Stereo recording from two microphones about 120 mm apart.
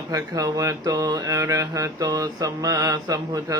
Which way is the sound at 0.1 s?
30° right (ahead or behind).